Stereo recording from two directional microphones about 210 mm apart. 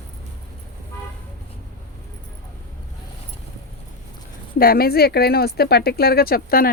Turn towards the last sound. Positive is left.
turn(degrees=45)  # may be behind; listen again after turning